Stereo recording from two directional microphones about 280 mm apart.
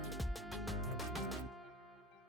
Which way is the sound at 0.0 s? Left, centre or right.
Centre.